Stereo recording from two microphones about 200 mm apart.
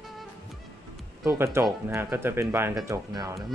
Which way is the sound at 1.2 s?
15° right (ahead or behind).